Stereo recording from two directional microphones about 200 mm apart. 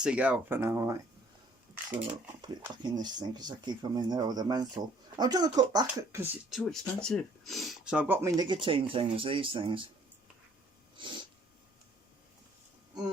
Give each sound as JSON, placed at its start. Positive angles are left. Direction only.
{"t": 0.0, "sound": "speech", "side_deg": -5}
{"t": 1.9, "sound": "speech", "side_deg": -25}
{"t": 6.5, "sound": "speech", "side_deg": 0}
{"t": 10.9, "sound": "snort", "side_deg": -25}